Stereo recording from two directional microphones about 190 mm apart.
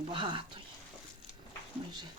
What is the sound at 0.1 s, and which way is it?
Speech, 25° right (ahead or behind).